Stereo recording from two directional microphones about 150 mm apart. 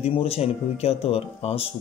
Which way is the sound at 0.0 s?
40° left (ahead or behind).